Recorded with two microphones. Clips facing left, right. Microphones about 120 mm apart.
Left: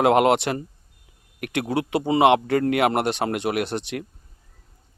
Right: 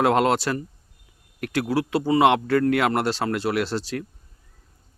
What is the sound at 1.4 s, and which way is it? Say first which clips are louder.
Speech: right 1 dB; 65° left (ahead or behind).